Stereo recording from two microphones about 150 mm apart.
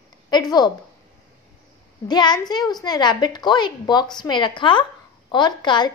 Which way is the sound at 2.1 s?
30° left (ahead or behind).